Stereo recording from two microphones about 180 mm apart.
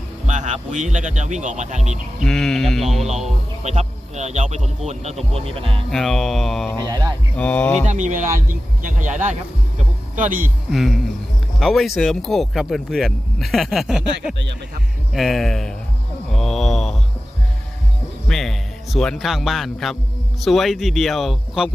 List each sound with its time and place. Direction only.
0.3 s speech: 40° right (ahead or behind)
2.2 s speech: 5° left (ahead or behind)
3.6 s a man's voice: 40° right (ahead or behind)
5.9 s speech: centre (ahead or behind)
6.8 s speech: 20° right (ahead or behind)
7.3 s speech: 10° left (ahead or behind)
7.9 s speech: 45° right (ahead or behind)
10.7 s speech: centre (ahead or behind)
16.3 s mantra: centre (ahead or behind)
18.3 s music: centre (ahead or behind)
20.4 s speech: centre (ahead or behind)